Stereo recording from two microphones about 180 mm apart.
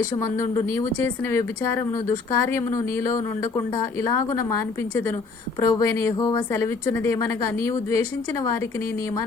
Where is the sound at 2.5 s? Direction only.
15° left (ahead or behind).